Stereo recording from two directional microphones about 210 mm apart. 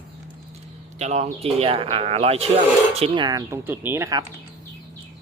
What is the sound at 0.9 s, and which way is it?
Speech, 30° right (ahead or behind).